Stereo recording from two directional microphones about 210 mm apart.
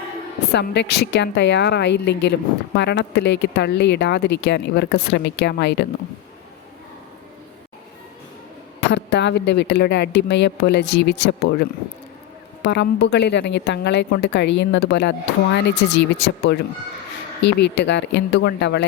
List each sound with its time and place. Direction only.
0.5 s a woman's voice: 55° left (ahead or behind)
8.9 s a woman's voice: 55° left (ahead or behind)